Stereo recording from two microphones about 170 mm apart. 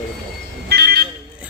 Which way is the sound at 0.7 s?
70° right (ahead or behind).